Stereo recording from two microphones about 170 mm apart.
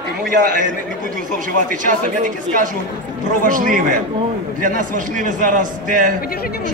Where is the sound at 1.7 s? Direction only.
50° right (ahead or behind).